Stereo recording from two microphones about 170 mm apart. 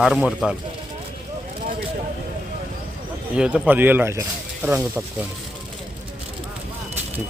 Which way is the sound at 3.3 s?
5° right (ahead or behind).